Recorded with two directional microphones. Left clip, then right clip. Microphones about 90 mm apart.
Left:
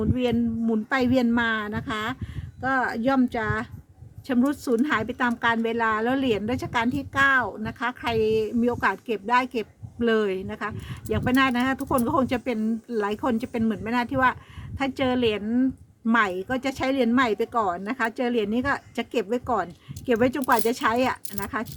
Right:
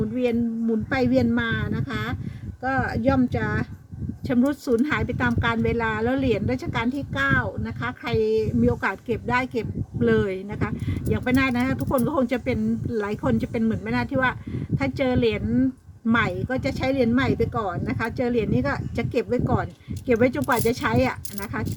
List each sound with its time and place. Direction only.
0.2 s a woman's voice: 70° left (ahead or behind)
2.6 s speech: 90° left; by 3.7 s 70° left (ahead or behind)
4.3 s a woman's voice: 40° left (ahead or behind); by 17.7 s 65° left (ahead or behind)
17.8 s a woman's voice: 45° left (ahead or behind)